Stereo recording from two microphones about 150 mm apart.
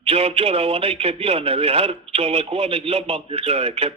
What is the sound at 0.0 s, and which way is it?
Speech, 40° right (ahead or behind).